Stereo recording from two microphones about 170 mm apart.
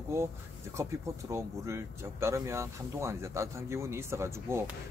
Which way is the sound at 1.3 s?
15° right (ahead or behind).